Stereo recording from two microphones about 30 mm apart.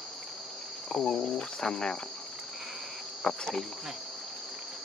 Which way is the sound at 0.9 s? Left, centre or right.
Centre.